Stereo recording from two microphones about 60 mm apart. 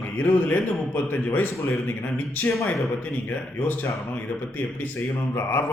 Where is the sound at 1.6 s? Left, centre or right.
Left.